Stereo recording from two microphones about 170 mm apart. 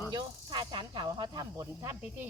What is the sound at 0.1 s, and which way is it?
Speech, 25° right (ahead or behind).